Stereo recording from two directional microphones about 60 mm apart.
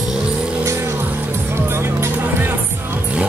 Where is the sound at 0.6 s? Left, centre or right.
Right.